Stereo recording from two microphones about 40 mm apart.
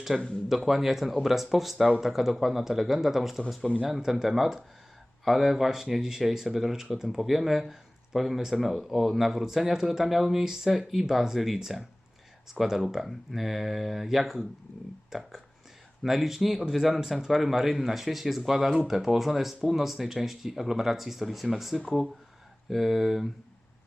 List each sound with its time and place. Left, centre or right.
0.1 s speech: centre